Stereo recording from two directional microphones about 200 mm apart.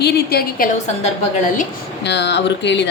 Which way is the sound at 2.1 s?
60° left (ahead or behind).